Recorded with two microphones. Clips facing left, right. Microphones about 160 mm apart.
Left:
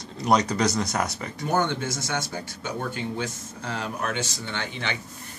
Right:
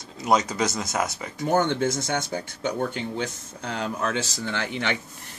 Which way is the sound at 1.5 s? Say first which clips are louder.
Right 3 dB; 55° right (ahead or behind).